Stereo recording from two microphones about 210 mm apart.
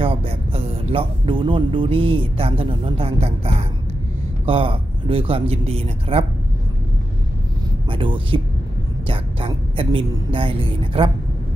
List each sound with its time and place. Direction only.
0.0 s speech: 25° right (ahead or behind)
7.9 s speech: 25° right (ahead or behind)